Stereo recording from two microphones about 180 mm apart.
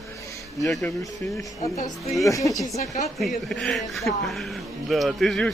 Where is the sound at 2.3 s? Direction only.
20° left (ahead or behind).